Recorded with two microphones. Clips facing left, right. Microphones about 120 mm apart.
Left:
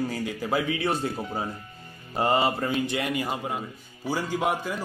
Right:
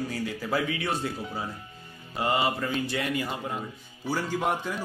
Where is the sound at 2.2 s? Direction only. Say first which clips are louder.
Left 3 dB; 35° left (ahead or behind).